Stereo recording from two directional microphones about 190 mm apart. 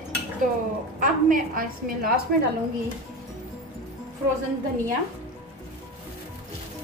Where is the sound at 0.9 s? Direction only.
45° right (ahead or behind).